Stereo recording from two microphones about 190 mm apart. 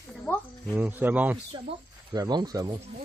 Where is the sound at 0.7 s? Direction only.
10° right (ahead or behind).